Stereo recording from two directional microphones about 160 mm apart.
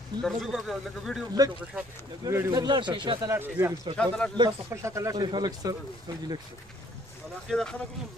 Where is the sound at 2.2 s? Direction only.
15° right (ahead or behind).